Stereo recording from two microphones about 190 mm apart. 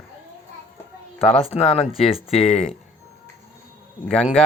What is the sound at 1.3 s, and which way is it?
Speech, 35° left (ahead or behind).